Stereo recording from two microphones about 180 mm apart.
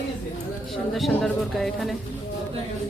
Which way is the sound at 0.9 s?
Centre (ahead or behind).